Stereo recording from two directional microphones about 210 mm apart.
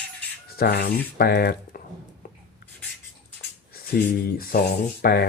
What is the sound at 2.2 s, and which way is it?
Writing, 40° left (ahead or behind).